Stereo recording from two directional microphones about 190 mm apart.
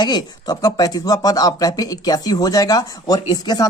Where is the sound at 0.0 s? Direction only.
20° left (ahead or behind).